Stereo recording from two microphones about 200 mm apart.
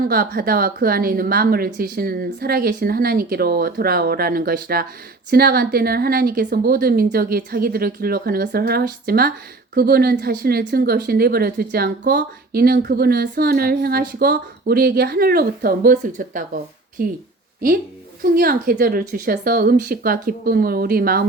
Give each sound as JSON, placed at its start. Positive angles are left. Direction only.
{"t": 0.0, "sound": "a woman's voice", "side_deg": -50}
{"t": 18.2, "sound": "a woman's voice", "side_deg": -50}